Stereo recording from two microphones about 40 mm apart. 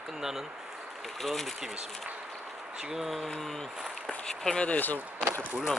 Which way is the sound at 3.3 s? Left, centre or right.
Centre.